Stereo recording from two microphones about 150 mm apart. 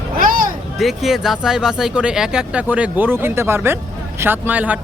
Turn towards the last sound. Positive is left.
turn(degrees=-10)  # may be behind; listen again after turning